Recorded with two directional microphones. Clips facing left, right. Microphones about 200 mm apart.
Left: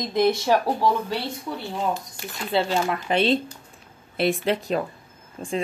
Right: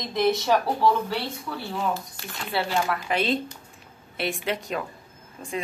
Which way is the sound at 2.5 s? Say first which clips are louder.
Left 3 dB; 20° left (ahead or behind).